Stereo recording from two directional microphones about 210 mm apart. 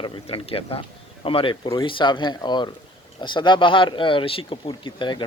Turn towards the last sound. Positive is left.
turn(degrees=20)  # may be behind; listen again after turning